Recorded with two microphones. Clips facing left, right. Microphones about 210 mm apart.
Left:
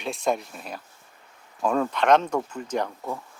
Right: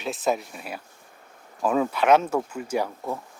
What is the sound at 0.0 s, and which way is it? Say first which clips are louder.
Speech: even; 5° right (ahead or behind).